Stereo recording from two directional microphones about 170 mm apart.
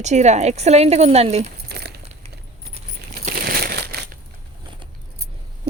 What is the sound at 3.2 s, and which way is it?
Crumpling, 55° right (ahead or behind).